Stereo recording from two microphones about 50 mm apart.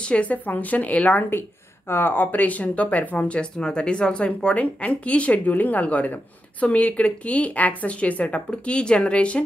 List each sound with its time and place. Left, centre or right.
0.0 s speech: left
1.9 s speech: left
3.3 s speech: centre